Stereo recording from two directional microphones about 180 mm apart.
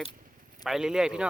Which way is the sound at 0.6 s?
Centre (ahead or behind).